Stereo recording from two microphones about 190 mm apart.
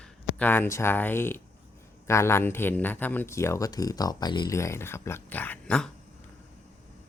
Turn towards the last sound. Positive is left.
turn(degrees=5)  # may be behind; listen again after turning